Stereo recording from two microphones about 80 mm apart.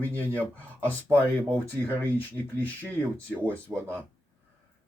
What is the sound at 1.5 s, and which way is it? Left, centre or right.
Speech, left.